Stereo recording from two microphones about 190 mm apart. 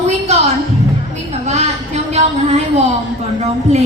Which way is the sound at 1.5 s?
35° right (ahead or behind).